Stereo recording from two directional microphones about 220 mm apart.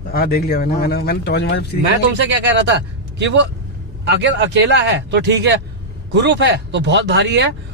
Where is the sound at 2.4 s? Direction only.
55° right (ahead or behind).